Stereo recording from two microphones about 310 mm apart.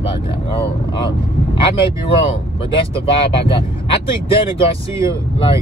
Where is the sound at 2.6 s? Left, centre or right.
Centre.